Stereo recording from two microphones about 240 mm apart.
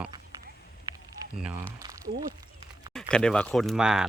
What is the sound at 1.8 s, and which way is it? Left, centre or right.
Speech, centre.